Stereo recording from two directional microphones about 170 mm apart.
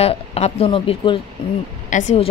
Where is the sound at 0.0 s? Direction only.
35° left (ahead or behind).